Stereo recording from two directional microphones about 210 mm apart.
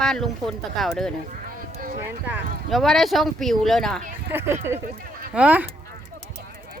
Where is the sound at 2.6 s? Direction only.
Centre (ahead or behind).